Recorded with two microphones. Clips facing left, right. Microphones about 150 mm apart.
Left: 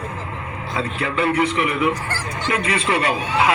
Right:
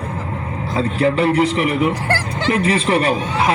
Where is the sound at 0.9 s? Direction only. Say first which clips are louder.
Right 5 dB; 35° right (ahead or behind).